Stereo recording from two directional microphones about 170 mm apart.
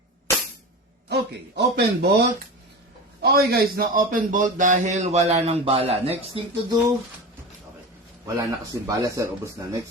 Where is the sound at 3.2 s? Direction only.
65° right (ahead or behind); by 6.4 s 35° right (ahead or behind).